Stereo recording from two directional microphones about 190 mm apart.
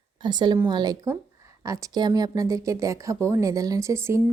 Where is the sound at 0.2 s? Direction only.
25° right (ahead or behind).